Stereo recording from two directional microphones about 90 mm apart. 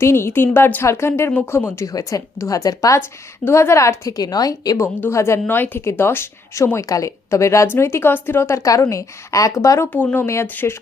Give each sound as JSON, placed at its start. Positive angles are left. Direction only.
{"t": 0.0, "sound": "a woman's voice", "side_deg": 30}
{"t": 3.4, "sound": "speech", "side_deg": 30}
{"t": 4.9, "sound": "a woman's voice", "side_deg": 25}
{"t": 9.9, "sound": "a woman's voice", "side_deg": 20}
{"t": 10.2, "sound": "a woman's voice", "side_deg": 30}